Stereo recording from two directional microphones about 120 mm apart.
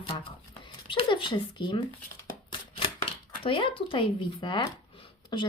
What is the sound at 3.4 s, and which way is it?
Speech, 45° left (ahead or behind).